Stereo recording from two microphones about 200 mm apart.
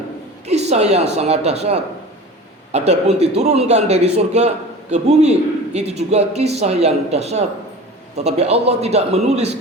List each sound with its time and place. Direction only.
0.4 s a man's voice: 35° right (ahead or behind)